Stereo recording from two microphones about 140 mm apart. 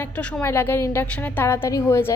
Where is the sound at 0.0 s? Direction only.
10° left (ahead or behind).